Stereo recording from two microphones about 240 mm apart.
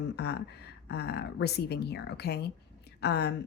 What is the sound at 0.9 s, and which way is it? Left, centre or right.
A woman's voice, left.